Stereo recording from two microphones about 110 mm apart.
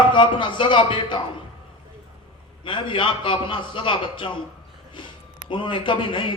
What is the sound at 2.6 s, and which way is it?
A man's voice, 50° left (ahead or behind).